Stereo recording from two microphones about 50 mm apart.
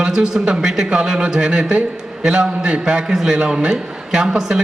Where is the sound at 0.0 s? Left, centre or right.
Centre.